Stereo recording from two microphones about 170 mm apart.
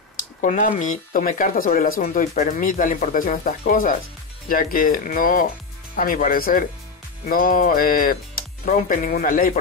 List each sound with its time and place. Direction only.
0.4 s speech: 50° left (ahead or behind)